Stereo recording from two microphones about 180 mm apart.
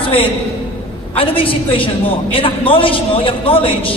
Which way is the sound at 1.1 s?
30° left (ahead or behind).